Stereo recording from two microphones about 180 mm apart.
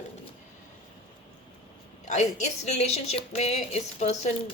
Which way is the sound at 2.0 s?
40° left (ahead or behind).